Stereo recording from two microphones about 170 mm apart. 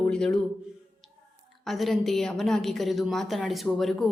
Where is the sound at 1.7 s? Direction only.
Centre (ahead or behind).